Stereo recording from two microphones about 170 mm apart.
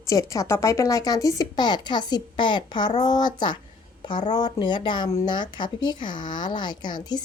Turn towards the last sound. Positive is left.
turn(degrees=25)  # may be behind; listen again after turning